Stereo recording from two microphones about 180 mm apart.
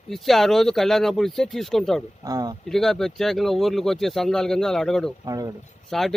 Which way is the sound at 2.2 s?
20° right (ahead or behind).